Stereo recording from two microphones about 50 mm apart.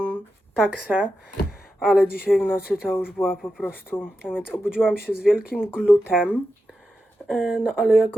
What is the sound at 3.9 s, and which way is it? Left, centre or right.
Speech, left.